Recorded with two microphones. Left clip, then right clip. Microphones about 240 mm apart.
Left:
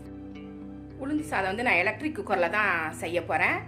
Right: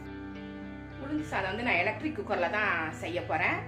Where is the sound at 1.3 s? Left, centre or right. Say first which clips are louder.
Left 4 dB; left.